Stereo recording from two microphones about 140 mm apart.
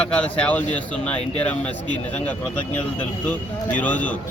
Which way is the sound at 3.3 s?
10° left (ahead or behind).